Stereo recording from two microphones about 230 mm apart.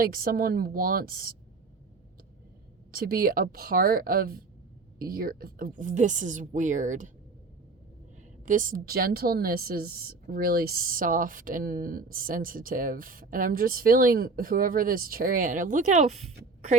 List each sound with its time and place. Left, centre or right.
0.0 s a woman's voice: right
2.9 s a woman's voice: right
8.4 s a woman's voice: right